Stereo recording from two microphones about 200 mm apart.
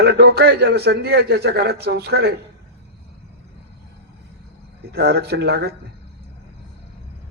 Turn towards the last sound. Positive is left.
turn(degrees=-55)  # may be behind; listen again after turning